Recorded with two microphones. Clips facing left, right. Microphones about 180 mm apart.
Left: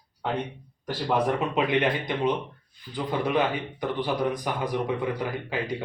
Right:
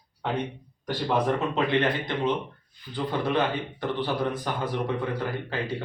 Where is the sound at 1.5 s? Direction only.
15° left (ahead or behind).